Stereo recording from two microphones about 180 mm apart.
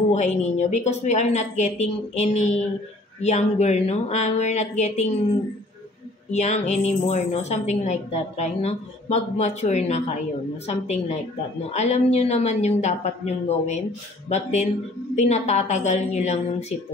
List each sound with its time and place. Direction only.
0.1 s a woman's voice: 40° left (ahead or behind)
6.3 s a woman's voice: 40° left (ahead or behind)